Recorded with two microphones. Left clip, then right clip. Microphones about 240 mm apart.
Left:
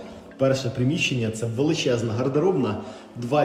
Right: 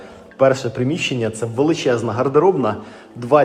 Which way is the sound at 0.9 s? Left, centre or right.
Right.